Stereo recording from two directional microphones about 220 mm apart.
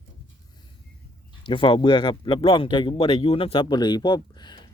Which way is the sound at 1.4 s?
20° left (ahead or behind).